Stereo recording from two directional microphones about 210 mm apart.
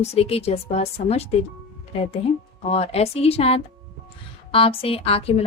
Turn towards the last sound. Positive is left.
turn(degrees=25)  # may be behind; listen again after turning